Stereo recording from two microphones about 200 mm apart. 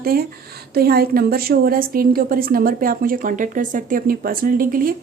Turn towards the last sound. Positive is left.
turn(degrees=-45)  # may be behind; listen again after turning